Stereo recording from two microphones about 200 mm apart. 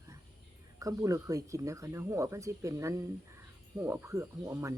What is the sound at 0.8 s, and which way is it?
Speech, 15° right (ahead or behind).